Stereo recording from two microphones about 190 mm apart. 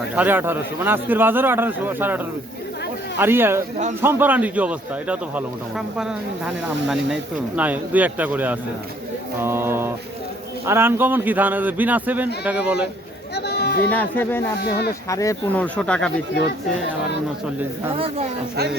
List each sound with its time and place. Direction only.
0.2 s speech: 10° right (ahead or behind)
13.3 s a sound: 60° left (ahead or behind)
13.9 s speech: 10° left (ahead or behind)
17.9 s speech: 30° right (ahead or behind)